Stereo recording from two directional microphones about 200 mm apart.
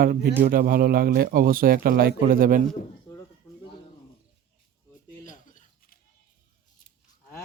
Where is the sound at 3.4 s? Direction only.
15° left (ahead or behind).